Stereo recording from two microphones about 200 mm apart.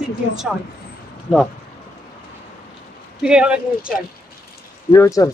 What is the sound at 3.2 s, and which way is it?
Speech, 5° right (ahead or behind).